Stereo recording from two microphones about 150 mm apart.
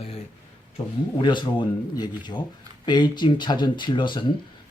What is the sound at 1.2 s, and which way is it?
A man's voice, 30° left (ahead or behind).